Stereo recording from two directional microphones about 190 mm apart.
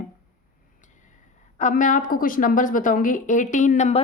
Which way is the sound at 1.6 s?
40° left (ahead or behind).